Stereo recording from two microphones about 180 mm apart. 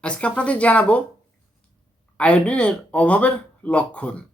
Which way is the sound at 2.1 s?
5° left (ahead or behind).